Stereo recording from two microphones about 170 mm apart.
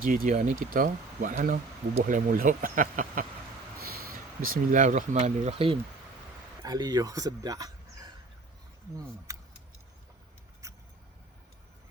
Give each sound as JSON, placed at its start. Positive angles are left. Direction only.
{"t": 0.0, "sound": "speech", "side_deg": -55}
{"t": 4.4, "sound": "speech", "side_deg": -55}
{"t": 6.6, "sound": "speech", "side_deg": -25}
{"t": 9.3, "sound": "keys jangling", "side_deg": -15}
{"t": 10.6, "sound": "vehicle", "side_deg": -15}